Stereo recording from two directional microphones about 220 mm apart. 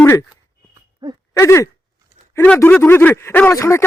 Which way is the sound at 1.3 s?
15° left (ahead or behind).